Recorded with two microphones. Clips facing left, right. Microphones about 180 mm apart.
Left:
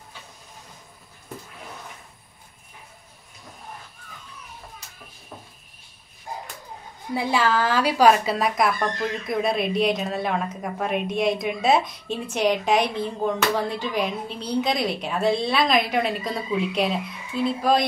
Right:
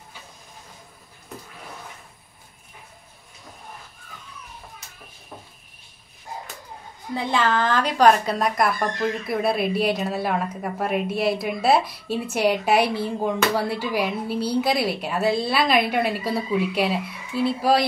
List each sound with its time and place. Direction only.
7.2 s speech: 10° left (ahead or behind); by 17.8 s 5° right (ahead or behind)